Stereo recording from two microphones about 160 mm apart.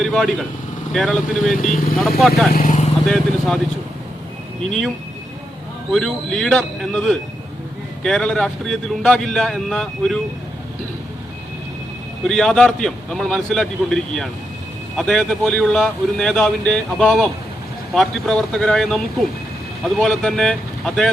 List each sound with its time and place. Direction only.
0.0 s speech: centre (ahead or behind)
1.6 s speech: 60° left (ahead or behind)
2.0 s speech: centre (ahead or behind)
2.5 s speech: 55° left (ahead or behind)
3.1 s speech: 5° left (ahead or behind)
5.9 s speech: centre (ahead or behind)
12.3 s speech: 5° left (ahead or behind)